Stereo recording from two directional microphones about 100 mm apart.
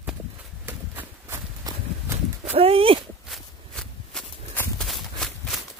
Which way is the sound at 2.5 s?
70° right (ahead or behind).